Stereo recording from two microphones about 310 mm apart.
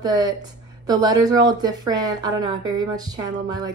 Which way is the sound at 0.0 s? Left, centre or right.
Centre.